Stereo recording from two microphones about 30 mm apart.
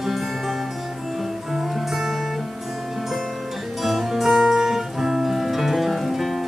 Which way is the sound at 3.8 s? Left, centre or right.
Centre.